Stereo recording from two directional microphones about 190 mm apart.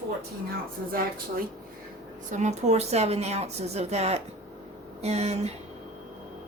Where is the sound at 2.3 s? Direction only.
35° right (ahead or behind).